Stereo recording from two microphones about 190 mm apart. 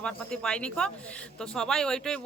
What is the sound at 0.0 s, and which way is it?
Speech, 5° left (ahead or behind).